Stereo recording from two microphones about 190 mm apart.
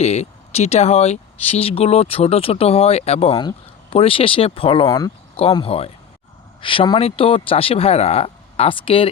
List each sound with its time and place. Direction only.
0.0 s speech: 35° left (ahead or behind)